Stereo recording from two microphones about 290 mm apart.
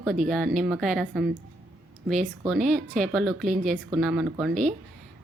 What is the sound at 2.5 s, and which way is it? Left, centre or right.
A woman's voice, centre.